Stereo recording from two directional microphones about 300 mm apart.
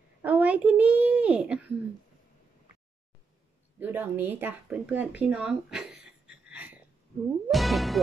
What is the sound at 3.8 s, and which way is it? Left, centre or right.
Speech, centre.